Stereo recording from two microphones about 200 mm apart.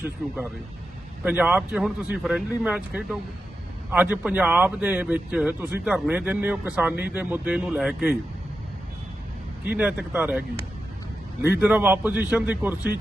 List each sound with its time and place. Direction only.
1.2 s a man's voice: 10° right (ahead or behind)
9.6 s a man's voice: 10° right (ahead or behind)
11.6 s a man's voice: 10° right (ahead or behind)